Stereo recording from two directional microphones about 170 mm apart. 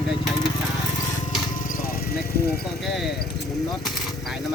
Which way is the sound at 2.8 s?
Centre (ahead or behind).